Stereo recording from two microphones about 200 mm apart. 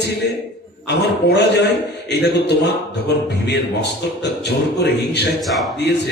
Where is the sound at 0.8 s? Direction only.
55° left (ahead or behind).